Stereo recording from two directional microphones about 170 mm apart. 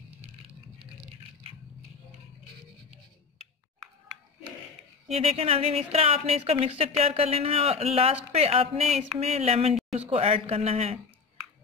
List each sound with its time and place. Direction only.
5.0 s speech: 35° right (ahead or behind)